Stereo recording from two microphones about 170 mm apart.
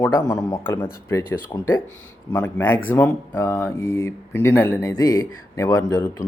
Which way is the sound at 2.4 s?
10° left (ahead or behind).